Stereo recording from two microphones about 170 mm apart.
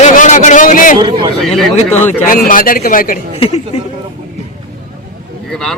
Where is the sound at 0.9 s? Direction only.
30° right (ahead or behind).